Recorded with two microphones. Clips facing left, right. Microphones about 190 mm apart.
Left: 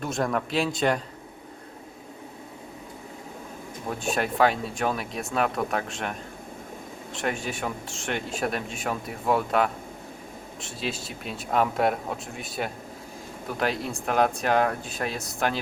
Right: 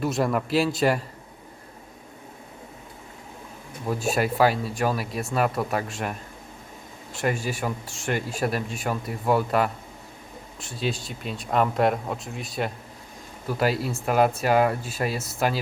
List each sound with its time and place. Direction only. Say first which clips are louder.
0.0 s speech: right 3 dB; 5° right (ahead or behind)
3.8 s speech: right 3 dB; 5° right (ahead or behind)